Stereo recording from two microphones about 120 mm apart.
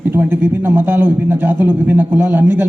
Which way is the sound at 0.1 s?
20° right (ahead or behind).